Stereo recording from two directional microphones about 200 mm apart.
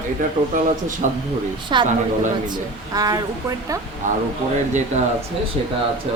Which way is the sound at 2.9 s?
15° right (ahead or behind).